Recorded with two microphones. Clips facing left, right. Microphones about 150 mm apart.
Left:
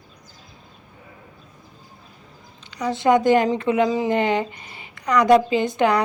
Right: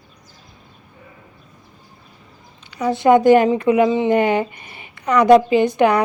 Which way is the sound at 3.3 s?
15° right (ahead or behind).